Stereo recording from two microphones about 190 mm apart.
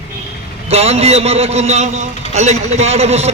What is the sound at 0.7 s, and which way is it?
A man's voice, 35° right (ahead or behind).